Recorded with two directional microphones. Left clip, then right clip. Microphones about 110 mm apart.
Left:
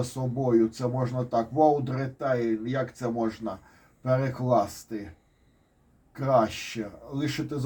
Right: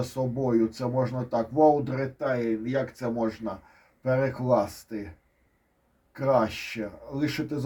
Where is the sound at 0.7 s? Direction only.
40° right (ahead or behind).